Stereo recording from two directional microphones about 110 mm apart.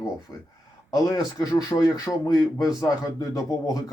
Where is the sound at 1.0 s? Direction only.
35° left (ahead or behind).